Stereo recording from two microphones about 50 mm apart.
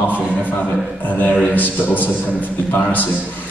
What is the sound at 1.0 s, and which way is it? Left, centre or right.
A man's voice, left.